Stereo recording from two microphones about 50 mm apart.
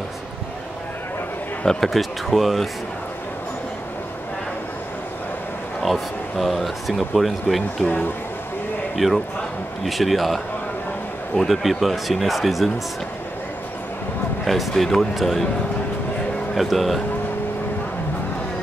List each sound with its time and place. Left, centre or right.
1.8 s speech: centre
5.8 s speech: centre
7.8 s speech: left
8.9 s a man's voice: centre
14.4 s speech: centre
16.5 s speech: centre